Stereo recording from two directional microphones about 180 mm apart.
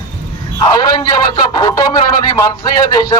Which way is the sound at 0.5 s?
20° left (ahead or behind).